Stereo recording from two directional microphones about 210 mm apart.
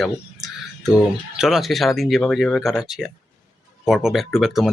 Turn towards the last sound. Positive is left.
turn(degrees=0)  # may be behind; listen again after turning